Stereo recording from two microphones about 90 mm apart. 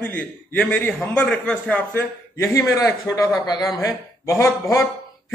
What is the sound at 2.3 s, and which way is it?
A man's voice, 35° left (ahead or behind).